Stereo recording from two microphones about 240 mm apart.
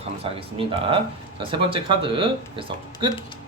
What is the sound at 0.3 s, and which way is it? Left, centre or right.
Speech, right.